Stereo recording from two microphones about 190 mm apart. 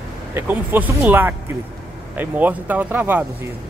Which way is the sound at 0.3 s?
10° right (ahead or behind).